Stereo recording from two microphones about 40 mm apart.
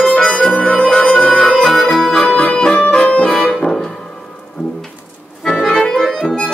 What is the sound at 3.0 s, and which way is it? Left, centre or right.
Accordion, left.